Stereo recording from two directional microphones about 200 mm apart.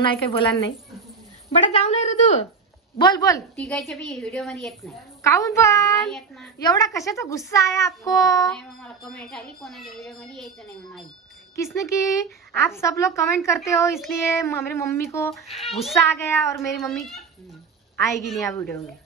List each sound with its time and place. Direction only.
0.0 s a woman's voice: 25° left (ahead or behind)
3.0 s a woman's voice: 20° left (ahead or behind)
3.5 s a woman's voice: 5° left (ahead or behind)
5.2 s a child's voice: 15° left (ahead or behind)
8.5 s a woman's voice: 5° left (ahead or behind)
11.5 s a child's voice: 15° left (ahead or behind)
13.9 s a woman's voice: centre (ahead or behind)
14.3 s a child's voice: 15° left (ahead or behind)
15.4 s a woman's voice: centre (ahead or behind)
16.4 s a child's voice: 15° left (ahead or behind)
16.7 s a woman's voice: centre (ahead or behind)